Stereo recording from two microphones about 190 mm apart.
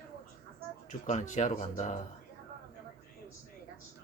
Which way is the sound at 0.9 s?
40° left (ahead or behind).